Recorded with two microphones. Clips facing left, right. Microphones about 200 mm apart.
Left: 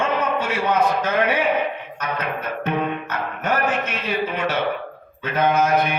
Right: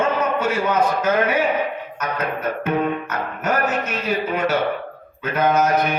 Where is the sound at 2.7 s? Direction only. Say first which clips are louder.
Right 2 dB; 40° right (ahead or behind).